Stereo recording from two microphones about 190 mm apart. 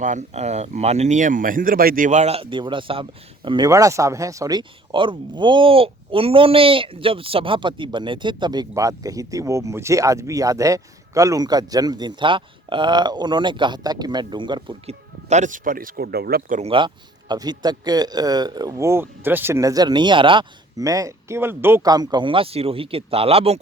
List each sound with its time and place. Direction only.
0.0 s speech: 40° right (ahead or behind); by 14.9 s 25° right (ahead or behind)
15.3 s speech: 40° right (ahead or behind)
16.6 s speech: 30° right (ahead or behind)